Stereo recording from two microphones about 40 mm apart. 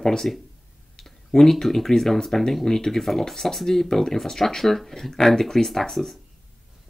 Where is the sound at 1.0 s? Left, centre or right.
Centre.